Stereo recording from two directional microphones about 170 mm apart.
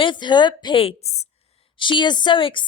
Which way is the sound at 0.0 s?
25° left (ahead or behind).